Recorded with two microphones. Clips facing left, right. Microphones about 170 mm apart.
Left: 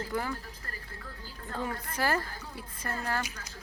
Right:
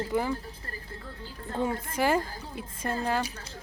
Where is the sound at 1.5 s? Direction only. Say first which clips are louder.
Right 6 dB; 25° right (ahead or behind).